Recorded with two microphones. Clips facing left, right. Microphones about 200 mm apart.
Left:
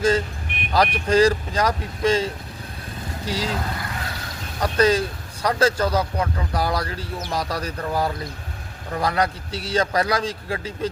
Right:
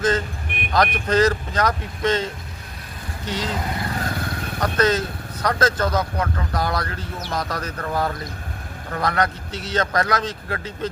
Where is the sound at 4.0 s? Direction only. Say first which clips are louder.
Right 6 dB; 50° right (ahead or behind).